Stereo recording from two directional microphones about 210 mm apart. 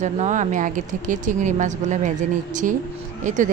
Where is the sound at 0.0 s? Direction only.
35° right (ahead or behind).